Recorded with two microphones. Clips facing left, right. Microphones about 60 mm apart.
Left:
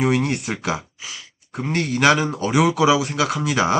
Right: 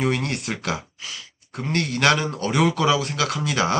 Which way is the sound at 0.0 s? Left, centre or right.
Centre.